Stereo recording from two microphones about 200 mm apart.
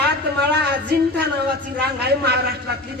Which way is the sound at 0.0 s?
55° right (ahead or behind).